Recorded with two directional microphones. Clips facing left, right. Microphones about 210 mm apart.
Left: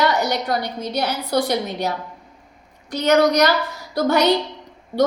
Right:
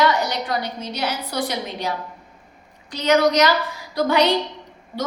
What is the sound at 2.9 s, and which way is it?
A woman's voice, 50° left (ahead or behind).